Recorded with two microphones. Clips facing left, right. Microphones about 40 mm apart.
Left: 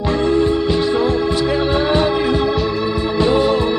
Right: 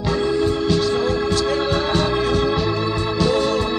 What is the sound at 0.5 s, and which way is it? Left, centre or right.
Music, left.